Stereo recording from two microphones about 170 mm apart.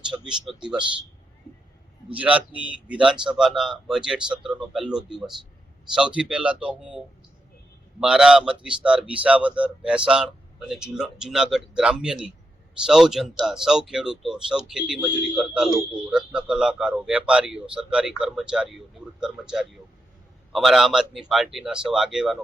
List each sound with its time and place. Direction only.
0.3 s speech: 5° right (ahead or behind)
2.1 s speech: 10° right (ahead or behind)
8.0 s speech: 5° right (ahead or behind)